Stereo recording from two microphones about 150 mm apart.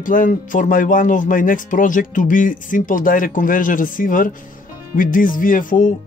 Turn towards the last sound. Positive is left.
turn(degrees=65)  # may be behind; listen again after turning